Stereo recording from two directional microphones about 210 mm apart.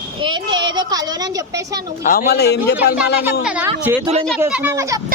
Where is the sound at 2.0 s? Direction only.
45° left (ahead or behind).